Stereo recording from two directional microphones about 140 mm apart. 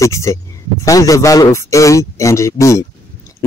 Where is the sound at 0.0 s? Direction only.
20° left (ahead or behind).